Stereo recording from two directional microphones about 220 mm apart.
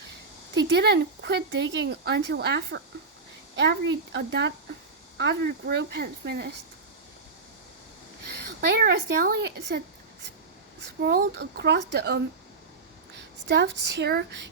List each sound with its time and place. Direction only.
0.5 s speech: 50° right (ahead or behind)
8.6 s speech: 45° right (ahead or behind)